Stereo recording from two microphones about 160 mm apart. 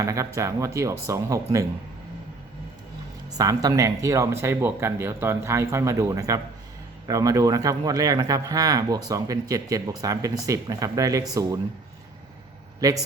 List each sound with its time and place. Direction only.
0.0 s speech: 20° right (ahead or behind)
3.3 s speech: 20° right (ahead or behind)